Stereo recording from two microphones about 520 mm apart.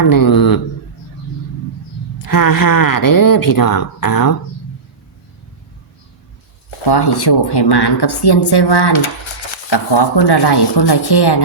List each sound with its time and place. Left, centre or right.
0.0 s speech: left
2.1 s speech: left
6.8 s speech: left